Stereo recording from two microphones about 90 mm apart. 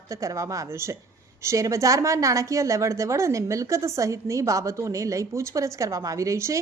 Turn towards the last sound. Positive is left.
turn(degrees=-35)  # may be behind; listen again after turning